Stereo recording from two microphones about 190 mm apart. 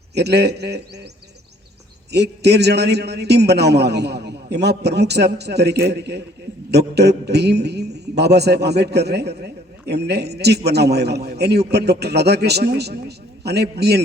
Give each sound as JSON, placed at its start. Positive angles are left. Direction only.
{"t": 0.1, "sound": "a man's voice", "side_deg": -60}
{"t": 2.1, "sound": "a man's voice", "side_deg": -60}